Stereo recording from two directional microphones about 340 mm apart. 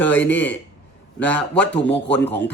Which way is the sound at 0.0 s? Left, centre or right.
Centre.